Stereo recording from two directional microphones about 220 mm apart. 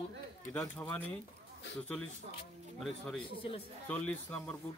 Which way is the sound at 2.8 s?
5° left (ahead or behind).